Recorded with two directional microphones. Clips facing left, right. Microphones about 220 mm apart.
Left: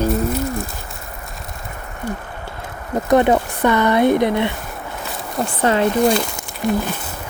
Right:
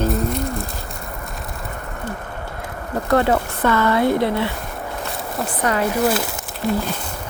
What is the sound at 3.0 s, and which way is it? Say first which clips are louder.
Speech: left 3 dB; 20° left (ahead or behind).